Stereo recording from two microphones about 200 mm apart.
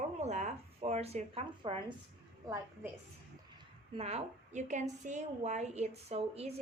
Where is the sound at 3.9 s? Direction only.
30° right (ahead or behind).